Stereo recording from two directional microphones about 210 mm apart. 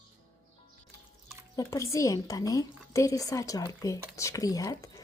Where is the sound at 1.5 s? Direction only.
15° left (ahead or behind).